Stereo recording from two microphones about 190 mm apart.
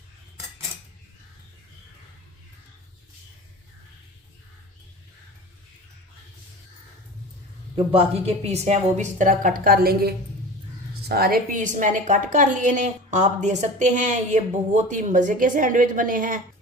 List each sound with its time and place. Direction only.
7.8 s a woman's voice: 30° right (ahead or behind)